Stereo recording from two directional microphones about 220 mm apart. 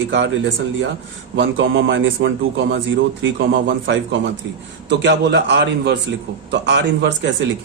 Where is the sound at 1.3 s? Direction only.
60° right (ahead or behind).